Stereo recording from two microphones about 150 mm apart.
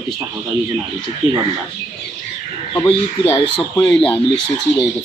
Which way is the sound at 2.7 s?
35° left (ahead or behind).